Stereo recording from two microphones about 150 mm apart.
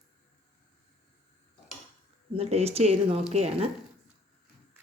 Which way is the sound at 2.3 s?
45° right (ahead or behind).